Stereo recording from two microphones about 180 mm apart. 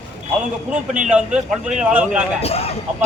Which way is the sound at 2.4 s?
35° left (ahead or behind).